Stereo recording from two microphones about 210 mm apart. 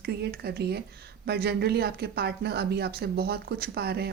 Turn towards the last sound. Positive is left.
turn(degrees=-50)  # may be behind; listen again after turning